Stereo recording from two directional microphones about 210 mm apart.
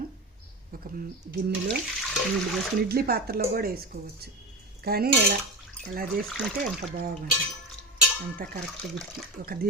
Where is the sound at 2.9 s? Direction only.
45° right (ahead or behind).